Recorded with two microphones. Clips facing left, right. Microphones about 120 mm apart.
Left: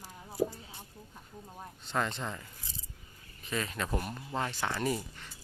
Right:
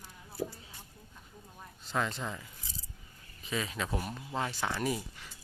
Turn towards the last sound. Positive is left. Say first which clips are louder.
# left 1 dB
turn(degrees=0)  # may be behind; listen again after turning